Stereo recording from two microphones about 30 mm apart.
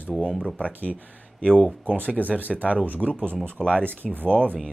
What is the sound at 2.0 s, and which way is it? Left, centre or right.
Speech, right.